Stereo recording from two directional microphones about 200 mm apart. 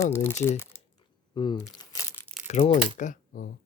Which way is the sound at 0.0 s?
15° left (ahead or behind).